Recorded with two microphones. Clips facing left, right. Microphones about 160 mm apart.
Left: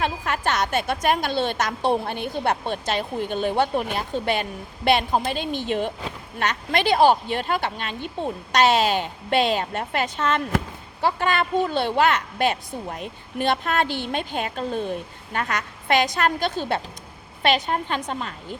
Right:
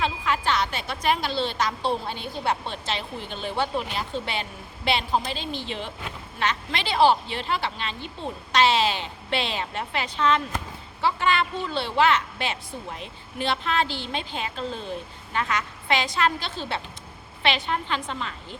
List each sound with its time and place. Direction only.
0.0 s a woman's voice: 50° left (ahead or behind)